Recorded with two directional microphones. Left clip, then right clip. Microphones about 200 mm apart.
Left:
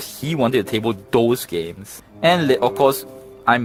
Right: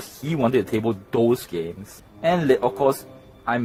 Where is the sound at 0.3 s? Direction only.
40° left (ahead or behind).